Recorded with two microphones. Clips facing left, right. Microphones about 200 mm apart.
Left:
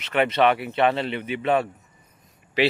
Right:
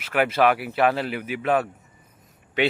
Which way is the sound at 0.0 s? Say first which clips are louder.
Even; 5° right (ahead or behind).